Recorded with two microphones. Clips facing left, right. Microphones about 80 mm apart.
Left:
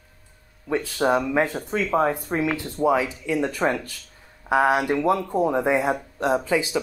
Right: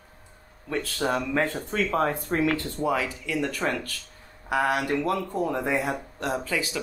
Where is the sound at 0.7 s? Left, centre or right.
Centre.